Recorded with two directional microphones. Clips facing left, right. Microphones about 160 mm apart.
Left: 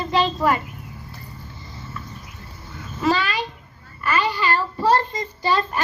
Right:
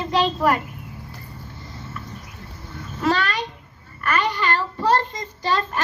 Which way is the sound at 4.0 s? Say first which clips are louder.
Left 1 dB; 5° left (ahead or behind).